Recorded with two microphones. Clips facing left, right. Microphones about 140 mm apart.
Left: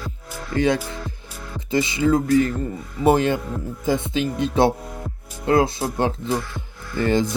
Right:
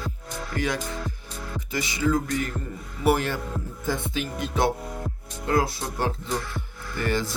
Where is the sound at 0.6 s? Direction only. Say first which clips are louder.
Left 8 dB; 25° left (ahead or behind).